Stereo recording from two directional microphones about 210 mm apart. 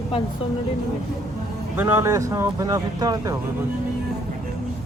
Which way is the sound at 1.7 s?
10° right (ahead or behind).